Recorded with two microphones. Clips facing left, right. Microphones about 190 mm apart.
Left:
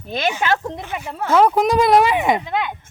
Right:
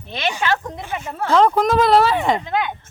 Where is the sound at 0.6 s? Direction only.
25° left (ahead or behind).